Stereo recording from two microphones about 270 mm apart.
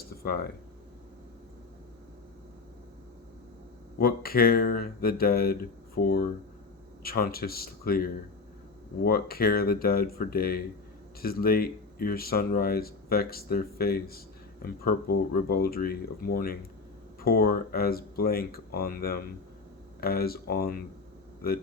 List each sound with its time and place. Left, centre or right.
3.9 s speech: left